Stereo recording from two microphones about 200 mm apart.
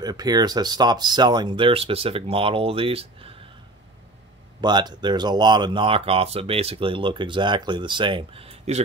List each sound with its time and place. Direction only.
0.0 s speech: 20° right (ahead or behind)
4.6 s speech: 20° right (ahead or behind)